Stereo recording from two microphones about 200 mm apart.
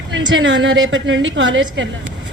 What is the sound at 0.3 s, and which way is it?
A woman's voice, 70° right (ahead or behind).